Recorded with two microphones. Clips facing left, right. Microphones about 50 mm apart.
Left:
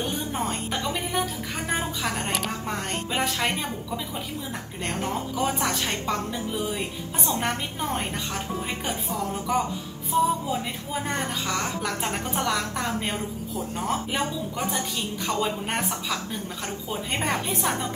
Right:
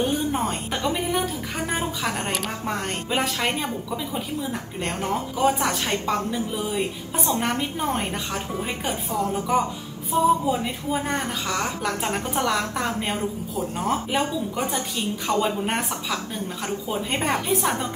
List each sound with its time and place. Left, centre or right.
0.0 s a woman's voice: right